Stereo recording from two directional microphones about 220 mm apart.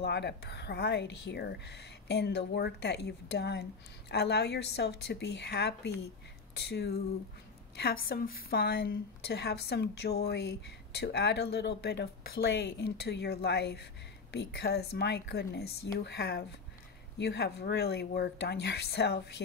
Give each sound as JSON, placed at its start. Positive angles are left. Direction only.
{"t": 0.0, "sound": "a woman's voice", "side_deg": 50}